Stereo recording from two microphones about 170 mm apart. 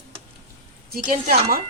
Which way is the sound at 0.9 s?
55° right (ahead or behind).